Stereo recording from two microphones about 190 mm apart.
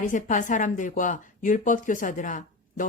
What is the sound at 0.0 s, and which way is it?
Speech, 45° left (ahead or behind).